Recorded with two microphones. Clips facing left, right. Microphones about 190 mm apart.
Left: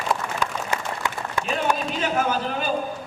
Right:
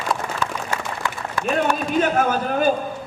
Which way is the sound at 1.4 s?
50° right (ahead or behind).